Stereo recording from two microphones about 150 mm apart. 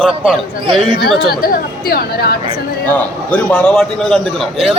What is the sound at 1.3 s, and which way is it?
Speech, 90° left.